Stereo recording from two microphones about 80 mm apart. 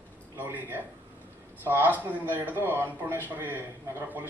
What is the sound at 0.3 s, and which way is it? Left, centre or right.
A man's voice, right.